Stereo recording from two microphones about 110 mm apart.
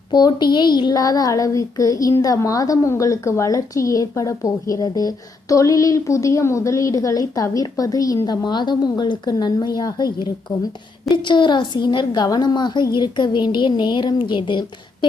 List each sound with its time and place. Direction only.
0.1 s child singing: 40° left (ahead or behind)
11.1 s a woman's voice: 45° left (ahead or behind)